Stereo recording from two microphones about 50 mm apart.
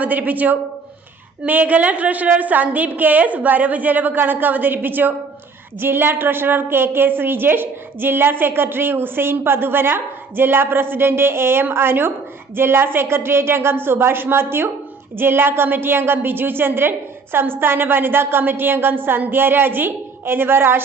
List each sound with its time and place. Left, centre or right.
0.0 s a woman's voice: right